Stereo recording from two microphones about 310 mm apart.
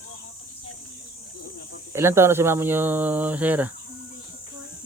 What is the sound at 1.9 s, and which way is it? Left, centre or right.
Speech, centre.